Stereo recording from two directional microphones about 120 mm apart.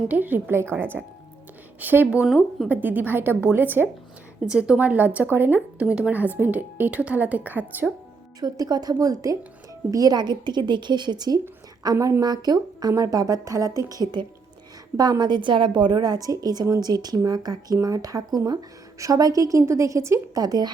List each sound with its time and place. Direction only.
0.1 s a woman's voice: 15° right (ahead or behind)
2.2 s a woman's voice: centre (ahead or behind)
2.6 s a woman's voice: 15° right (ahead or behind)
8.4 s a woman's voice: 30° right (ahead or behind)